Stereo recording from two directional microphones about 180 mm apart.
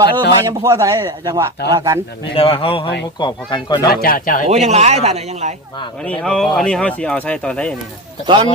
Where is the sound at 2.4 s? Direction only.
30° left (ahead or behind).